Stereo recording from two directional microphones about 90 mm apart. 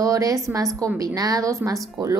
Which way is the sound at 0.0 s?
40° right (ahead or behind).